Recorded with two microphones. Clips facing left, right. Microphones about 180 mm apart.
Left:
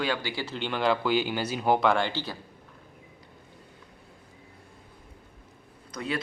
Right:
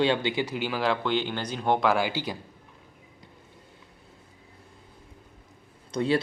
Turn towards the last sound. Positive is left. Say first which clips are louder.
# right 8 dB
turn(degrees=-30)  # may be behind; listen again after turning